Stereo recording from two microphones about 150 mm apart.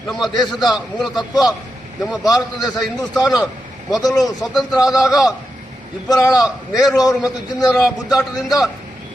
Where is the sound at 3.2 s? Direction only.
25° left (ahead or behind).